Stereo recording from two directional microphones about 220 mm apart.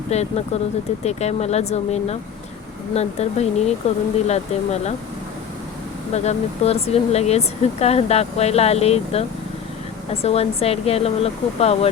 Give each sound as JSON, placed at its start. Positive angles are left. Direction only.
{"t": 0.1, "sound": "speech", "side_deg": 30}
{"t": 6.1, "sound": "speech", "side_deg": 30}
{"t": 10.2, "sound": "speech", "side_deg": 25}